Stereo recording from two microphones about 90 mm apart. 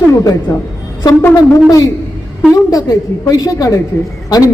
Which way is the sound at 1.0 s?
30° left (ahead or behind).